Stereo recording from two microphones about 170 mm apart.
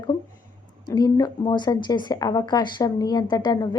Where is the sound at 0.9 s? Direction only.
25° left (ahead or behind).